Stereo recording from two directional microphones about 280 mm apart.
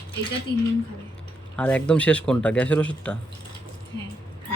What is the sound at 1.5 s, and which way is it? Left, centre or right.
Speech, centre.